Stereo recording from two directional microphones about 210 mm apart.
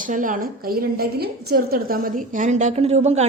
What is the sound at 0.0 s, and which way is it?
A woman's voice, 40° right (ahead or behind).